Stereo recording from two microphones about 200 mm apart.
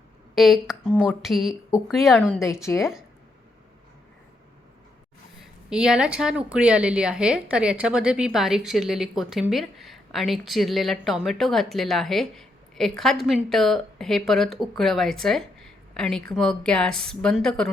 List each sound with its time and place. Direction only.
0.3 s a woman's voice: centre (ahead or behind)
5.7 s a woman's voice: 5° right (ahead or behind)